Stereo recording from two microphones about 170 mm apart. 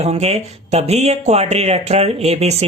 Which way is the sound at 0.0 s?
40° right (ahead or behind).